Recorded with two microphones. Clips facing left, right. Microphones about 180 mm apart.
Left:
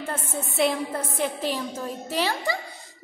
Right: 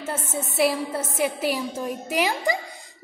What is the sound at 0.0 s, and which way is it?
A woman's voice, 5° right (ahead or behind).